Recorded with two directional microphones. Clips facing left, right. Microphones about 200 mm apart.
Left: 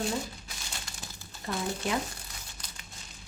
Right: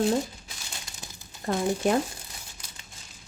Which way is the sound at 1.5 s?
45° right (ahead or behind).